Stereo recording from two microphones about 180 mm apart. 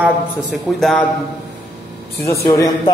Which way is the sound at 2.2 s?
15° left (ahead or behind).